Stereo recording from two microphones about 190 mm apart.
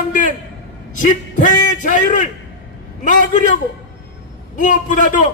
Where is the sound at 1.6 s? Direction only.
45° left (ahead or behind).